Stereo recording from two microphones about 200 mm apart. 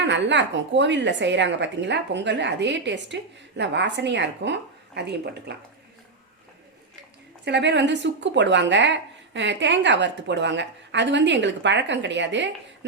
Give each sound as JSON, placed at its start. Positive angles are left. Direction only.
{"t": 0.0, "sound": "speech", "side_deg": -60}
{"t": 7.4, "sound": "speech", "side_deg": -60}